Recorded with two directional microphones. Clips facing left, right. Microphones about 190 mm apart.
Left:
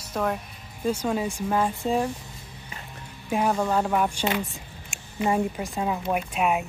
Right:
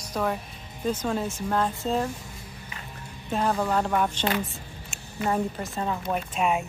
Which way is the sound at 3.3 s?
10° left (ahead or behind).